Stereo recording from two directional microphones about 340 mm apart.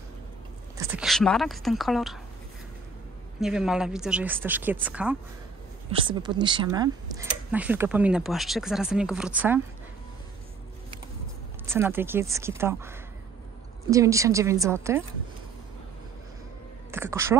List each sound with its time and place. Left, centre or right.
0.7 s speech: centre
3.3 s speech: centre
11.6 s speech: centre
16.9 s speech: centre